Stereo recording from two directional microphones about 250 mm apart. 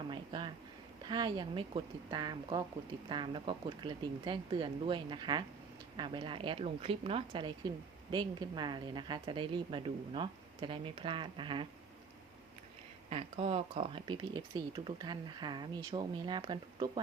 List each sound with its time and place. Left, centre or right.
0.1 s a sound: centre
1.0 s a woman's voice: centre
13.1 s speech: right